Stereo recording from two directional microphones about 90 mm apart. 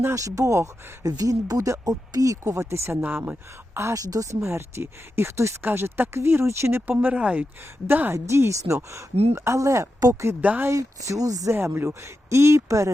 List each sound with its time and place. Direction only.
0.0 s speech: 35° right (ahead or behind)
3.0 s speech: 20° right (ahead or behind)
3.8 s speech: 35° right (ahead or behind)
10.4 s speech: 15° right (ahead or behind)
10.7 s speech: 35° right (ahead or behind)
11.5 s speech: 25° right (ahead or behind)